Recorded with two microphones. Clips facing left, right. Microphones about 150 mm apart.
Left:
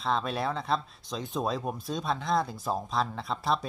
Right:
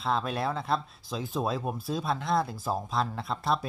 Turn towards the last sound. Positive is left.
turn(degrees=0)  # may be behind; listen again after turning